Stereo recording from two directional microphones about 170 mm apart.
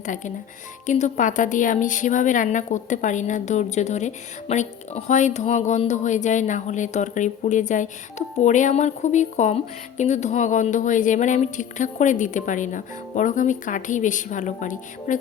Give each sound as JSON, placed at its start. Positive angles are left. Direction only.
{"t": 0.0, "sound": "a woman's voice", "side_deg": 45}